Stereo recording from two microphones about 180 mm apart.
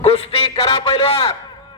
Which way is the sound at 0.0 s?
35° left (ahead or behind).